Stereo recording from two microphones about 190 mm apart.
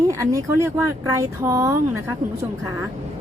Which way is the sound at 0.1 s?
15° right (ahead or behind).